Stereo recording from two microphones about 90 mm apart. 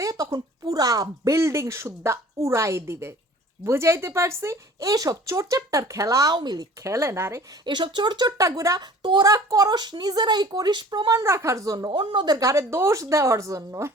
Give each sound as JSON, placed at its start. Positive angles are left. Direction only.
{"t": 0.0, "sound": "a woman's voice", "side_deg": -40}
{"t": 6.3, "sound": "speech", "side_deg": -50}
{"t": 6.8, "sound": "a woman's voice", "side_deg": -35}
{"t": 7.6, "sound": "speech", "side_deg": -60}
{"t": 8.4, "sound": "a woman's voice", "side_deg": -35}
{"t": 11.1, "sound": "a woman's voice", "side_deg": -35}
{"t": 11.9, "sound": "a woman's voice", "side_deg": -60}